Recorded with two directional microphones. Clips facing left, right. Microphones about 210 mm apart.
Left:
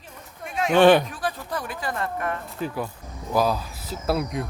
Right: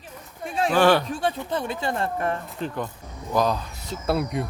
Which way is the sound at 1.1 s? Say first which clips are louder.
Right 4 dB; 25° right (ahead or behind).